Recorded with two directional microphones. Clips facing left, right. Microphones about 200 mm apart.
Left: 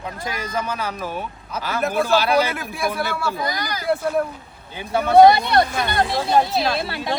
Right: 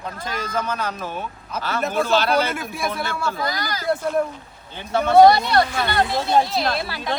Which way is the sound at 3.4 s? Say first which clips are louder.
Even; 20° left (ahead or behind).